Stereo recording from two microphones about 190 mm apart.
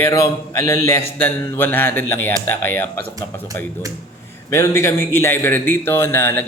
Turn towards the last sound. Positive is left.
turn(degrees=10)  # may be behind; listen again after turning